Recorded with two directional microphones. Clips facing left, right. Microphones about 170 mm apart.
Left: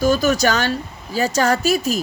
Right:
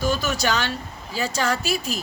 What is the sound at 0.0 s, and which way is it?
A woman's voice, 40° left (ahead or behind).